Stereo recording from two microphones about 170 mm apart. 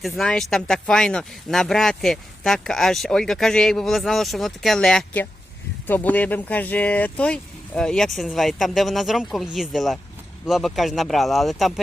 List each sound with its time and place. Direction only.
0.0 s speech: centre (ahead or behind)